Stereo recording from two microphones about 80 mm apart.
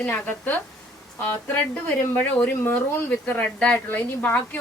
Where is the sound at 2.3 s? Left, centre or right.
Left.